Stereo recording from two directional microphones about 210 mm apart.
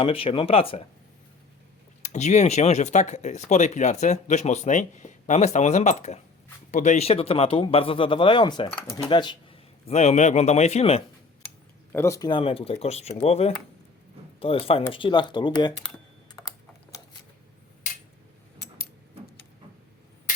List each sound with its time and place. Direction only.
0.0 s speech: 25° left (ahead or behind)
2.0 s speech: 35° left (ahead or behind)
11.9 s speech: 10° left (ahead or behind)
16.3 s typing: 20° left (ahead or behind)